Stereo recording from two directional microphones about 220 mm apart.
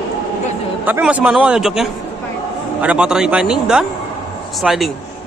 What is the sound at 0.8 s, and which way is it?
A man's voice, 5° right (ahead or behind).